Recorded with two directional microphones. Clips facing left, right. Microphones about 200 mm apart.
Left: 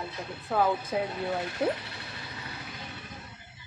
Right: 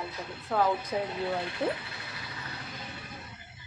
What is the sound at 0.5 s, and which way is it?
Speech, 5° left (ahead or behind).